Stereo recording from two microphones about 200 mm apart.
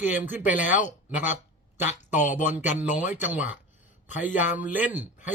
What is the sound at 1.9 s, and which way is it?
Speech, 35° left (ahead or behind).